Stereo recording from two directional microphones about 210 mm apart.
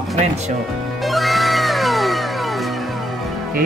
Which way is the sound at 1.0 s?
Centre (ahead or behind).